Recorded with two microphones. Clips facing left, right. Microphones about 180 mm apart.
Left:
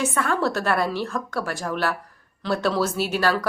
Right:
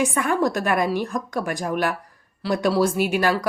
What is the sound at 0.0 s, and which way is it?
A woman's voice, 15° right (ahead or behind).